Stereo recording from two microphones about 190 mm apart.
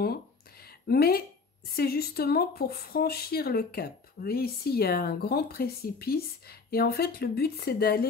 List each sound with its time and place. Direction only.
0.8 s speech: 55° left (ahead or behind)